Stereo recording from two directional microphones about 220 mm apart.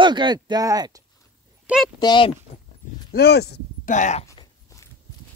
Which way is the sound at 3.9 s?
35° left (ahead or behind).